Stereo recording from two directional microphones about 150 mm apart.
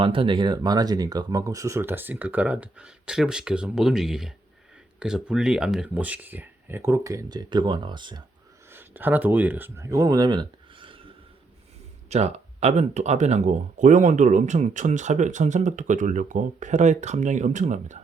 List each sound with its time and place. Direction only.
0.0 s speech: 35° right (ahead or behind)
8.7 s speech: 15° right (ahead or behind); by 11.1 s 35° right (ahead or behind)
12.0 s speech: 45° right (ahead or behind)